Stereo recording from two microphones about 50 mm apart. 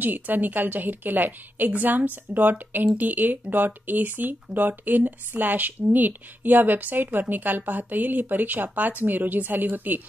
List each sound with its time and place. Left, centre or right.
0.0 s speech: right